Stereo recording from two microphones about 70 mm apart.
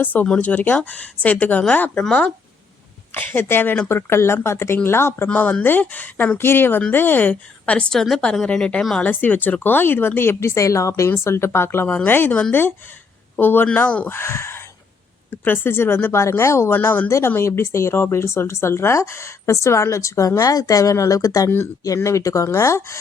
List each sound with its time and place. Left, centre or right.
0.0 s speech: left
3.2 s speech: left
5.3 s speech: left
9.0 s speech: left
12.3 s speech: centre
13.4 s speech: left
14.1 s speech: left
16.7 s speech: left
17.1 s speech: left
21.8 s speech: left